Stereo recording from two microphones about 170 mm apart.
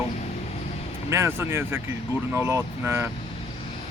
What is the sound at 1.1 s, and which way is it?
Speech, 15° right (ahead or behind).